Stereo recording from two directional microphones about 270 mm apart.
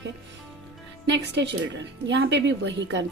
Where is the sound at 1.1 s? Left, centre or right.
Right.